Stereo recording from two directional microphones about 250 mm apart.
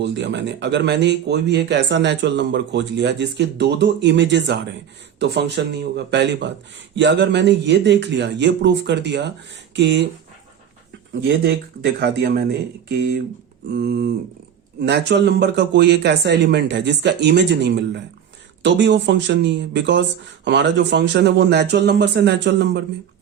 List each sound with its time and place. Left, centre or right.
0.0 s speech: right
11.1 s speech: right
13.7 s speech: right